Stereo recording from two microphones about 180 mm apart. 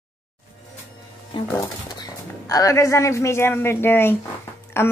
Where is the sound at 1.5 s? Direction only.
20° left (ahead or behind).